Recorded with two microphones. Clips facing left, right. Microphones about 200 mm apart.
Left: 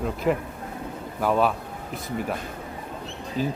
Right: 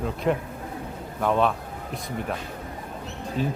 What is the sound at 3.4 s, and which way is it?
Speech, centre (ahead or behind).